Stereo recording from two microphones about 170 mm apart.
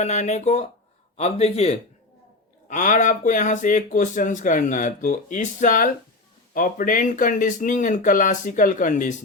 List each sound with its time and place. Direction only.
0.0 s a man's voice: 40° left (ahead or behind)